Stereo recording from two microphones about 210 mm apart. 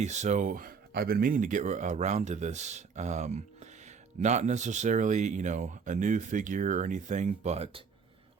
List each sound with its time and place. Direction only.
0.0 s speech: 35° right (ahead or behind)